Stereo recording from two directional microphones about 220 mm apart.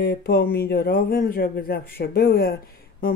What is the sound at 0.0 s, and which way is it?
Speech, 45° left (ahead or behind).